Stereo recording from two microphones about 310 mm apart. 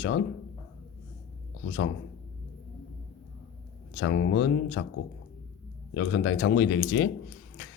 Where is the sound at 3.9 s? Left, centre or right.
Left.